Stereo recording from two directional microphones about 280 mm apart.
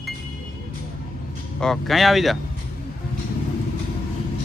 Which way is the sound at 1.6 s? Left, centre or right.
Centre.